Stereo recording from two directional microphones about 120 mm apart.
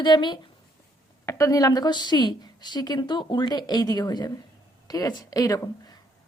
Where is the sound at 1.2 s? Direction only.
30° left (ahead or behind).